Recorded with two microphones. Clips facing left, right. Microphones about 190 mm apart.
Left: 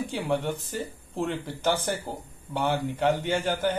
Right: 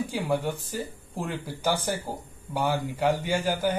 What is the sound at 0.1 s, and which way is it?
Speech, 10° right (ahead or behind).